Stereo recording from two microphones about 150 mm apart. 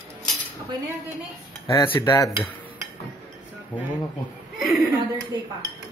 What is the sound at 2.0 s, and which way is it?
Cutlery, 20° left (ahead or behind).